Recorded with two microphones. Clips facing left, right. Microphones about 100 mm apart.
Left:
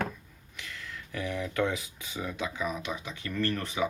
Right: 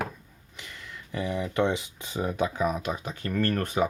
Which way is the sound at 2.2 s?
45° right (ahead or behind).